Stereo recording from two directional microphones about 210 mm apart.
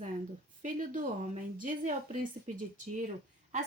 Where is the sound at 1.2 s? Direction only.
40° right (ahead or behind).